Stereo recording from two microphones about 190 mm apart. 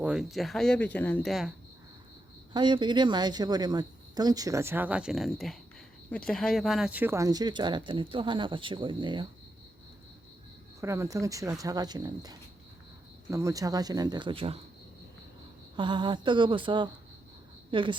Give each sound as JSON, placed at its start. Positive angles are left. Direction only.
{"t": 0.0, "sound": "speech", "side_deg": -5}
{"t": 2.5, "sound": "speech", "side_deg": -25}
{"t": 10.8, "sound": "speech", "side_deg": -15}
{"t": 15.7, "sound": "speech", "side_deg": -25}